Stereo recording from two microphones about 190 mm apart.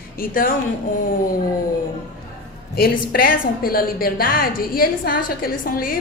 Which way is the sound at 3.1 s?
50° left (ahead or behind).